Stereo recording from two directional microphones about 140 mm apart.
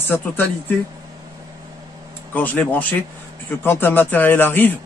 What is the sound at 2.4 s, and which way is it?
A man's voice, 10° left (ahead or behind).